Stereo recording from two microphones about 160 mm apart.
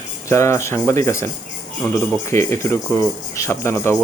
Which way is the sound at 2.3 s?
15° left (ahead or behind).